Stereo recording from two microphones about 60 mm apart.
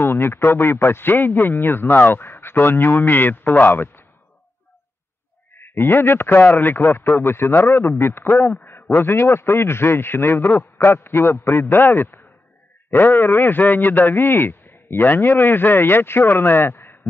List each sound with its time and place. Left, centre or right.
0.0 s a man's voice: left
5.6 s a man's voice: left